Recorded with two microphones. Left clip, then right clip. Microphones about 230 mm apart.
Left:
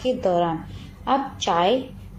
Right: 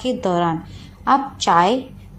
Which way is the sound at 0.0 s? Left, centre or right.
Right.